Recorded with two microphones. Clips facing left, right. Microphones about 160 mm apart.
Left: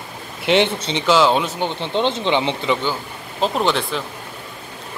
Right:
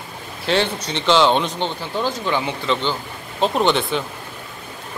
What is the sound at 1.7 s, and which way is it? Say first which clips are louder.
Speech: left 3 dB; 25° left (ahead or behind).